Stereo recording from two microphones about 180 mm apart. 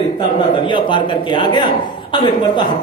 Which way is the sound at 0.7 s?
25° left (ahead or behind).